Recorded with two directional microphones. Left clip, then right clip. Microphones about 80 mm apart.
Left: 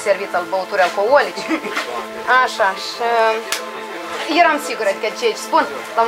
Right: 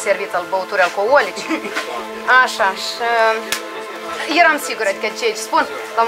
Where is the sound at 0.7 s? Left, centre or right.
Right.